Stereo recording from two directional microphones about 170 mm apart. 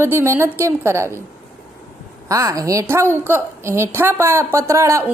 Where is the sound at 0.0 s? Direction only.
15° right (ahead or behind).